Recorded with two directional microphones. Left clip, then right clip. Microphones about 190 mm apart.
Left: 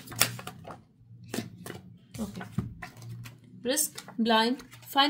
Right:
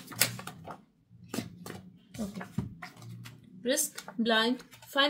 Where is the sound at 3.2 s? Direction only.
35° left (ahead or behind).